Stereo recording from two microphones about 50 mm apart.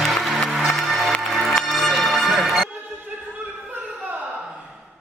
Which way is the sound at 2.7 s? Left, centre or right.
Right.